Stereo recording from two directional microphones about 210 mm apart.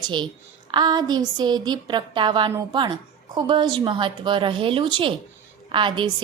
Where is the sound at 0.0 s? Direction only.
20° right (ahead or behind).